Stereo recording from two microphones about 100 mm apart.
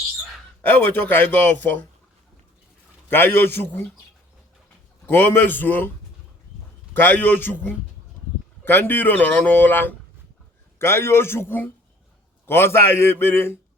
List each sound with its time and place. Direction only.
0.6 s speech: 20° left (ahead or behind)
3.1 s speech: 20° left (ahead or behind)
5.0 s speech: 20° left (ahead or behind)
6.9 s speech: 20° left (ahead or behind)